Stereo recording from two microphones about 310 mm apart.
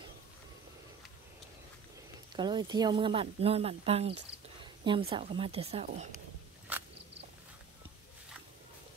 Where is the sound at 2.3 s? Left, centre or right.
Centre.